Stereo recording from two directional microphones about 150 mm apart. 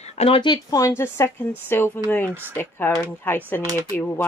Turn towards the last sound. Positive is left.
turn(degrees=15)  # may be behind; listen again after turning